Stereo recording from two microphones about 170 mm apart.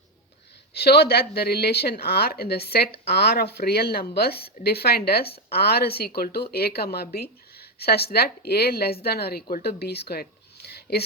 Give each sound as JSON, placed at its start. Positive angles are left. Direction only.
{"t": 0.7, "sound": "speech", "side_deg": 70}